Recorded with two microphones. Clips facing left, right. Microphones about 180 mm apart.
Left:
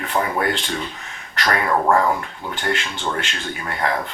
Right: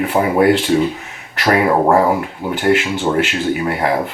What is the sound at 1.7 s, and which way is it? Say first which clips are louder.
Speech: right 3 dB; 30° right (ahead or behind).